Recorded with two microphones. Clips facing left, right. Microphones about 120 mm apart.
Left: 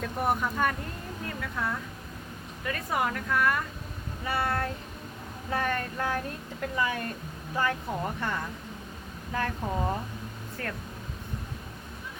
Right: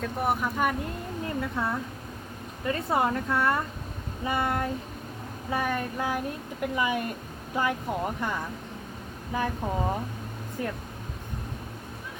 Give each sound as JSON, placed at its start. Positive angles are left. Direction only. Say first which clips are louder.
{"t": 0.0, "sound": "speech", "louder": "right 1 dB", "side_deg": -5}
{"t": 1.4, "sound": "a woman's voice", "louder": "right 3 dB", "side_deg": -25}